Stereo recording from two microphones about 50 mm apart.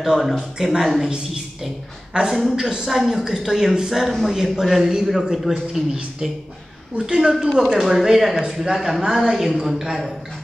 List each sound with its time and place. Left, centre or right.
0.0 s a man's voice: centre
7.0 s a man's voice: centre